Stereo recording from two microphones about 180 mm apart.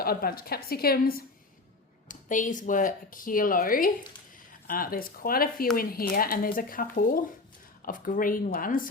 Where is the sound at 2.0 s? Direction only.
45° left (ahead or behind).